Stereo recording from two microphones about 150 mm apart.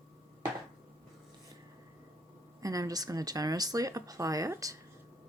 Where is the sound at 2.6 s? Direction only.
25° right (ahead or behind).